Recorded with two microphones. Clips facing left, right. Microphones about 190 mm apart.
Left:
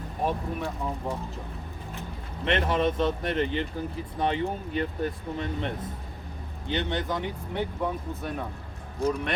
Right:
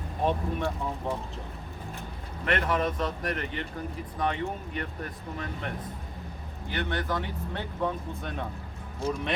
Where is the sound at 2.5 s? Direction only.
25° left (ahead or behind).